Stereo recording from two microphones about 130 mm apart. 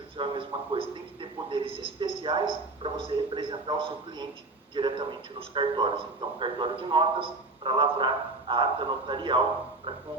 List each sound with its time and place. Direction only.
0.2 s a man's voice: 40° right (ahead or behind)